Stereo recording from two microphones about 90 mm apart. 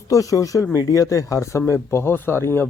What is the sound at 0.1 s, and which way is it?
Speech, 40° left (ahead or behind).